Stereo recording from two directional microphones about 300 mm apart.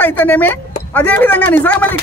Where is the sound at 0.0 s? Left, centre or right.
Centre.